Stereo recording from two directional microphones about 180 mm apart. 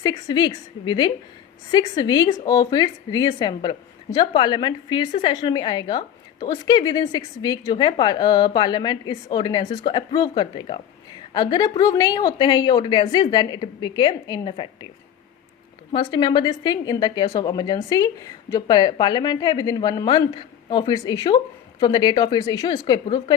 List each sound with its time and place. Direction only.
0.0 s a woman's voice: 25° left (ahead or behind)
15.9 s a woman's voice: 25° left (ahead or behind)